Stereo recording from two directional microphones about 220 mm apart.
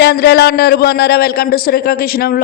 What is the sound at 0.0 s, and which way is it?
A woman's voice, 45° left (ahead or behind).